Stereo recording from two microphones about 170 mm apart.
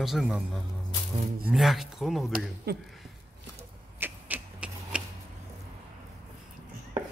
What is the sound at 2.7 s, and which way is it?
Speech, 70° right (ahead or behind).